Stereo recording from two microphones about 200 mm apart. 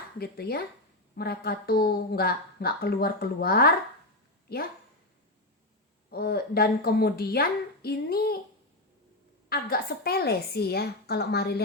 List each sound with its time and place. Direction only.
0.2 s a woman's voice: 50° left (ahead or behind)
6.1 s a woman's voice: 50° left (ahead or behind)
9.5 s a woman's voice: 50° left (ahead or behind)